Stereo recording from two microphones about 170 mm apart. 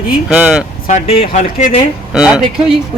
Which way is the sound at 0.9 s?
40° left (ahead or behind).